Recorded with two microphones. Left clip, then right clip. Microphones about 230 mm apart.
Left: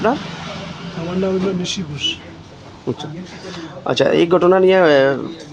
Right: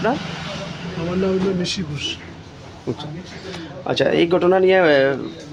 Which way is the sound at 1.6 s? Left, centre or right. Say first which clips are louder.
Left 3 dB; centre.